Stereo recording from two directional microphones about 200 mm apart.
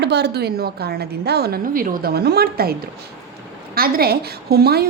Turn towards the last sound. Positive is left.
turn(degrees=-50)  # may be behind; listen again after turning